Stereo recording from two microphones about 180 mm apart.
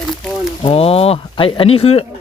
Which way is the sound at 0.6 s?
35° left (ahead or behind).